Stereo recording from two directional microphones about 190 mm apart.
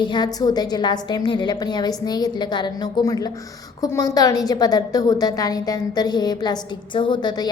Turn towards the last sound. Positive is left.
turn(degrees=20)  # may be behind; listen again after turning